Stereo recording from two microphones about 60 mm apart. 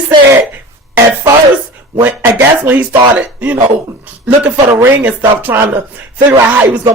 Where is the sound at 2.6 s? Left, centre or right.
Right.